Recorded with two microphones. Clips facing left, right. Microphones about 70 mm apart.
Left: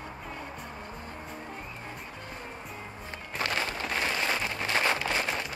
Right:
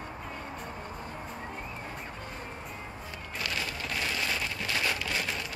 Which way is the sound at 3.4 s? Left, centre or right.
Left.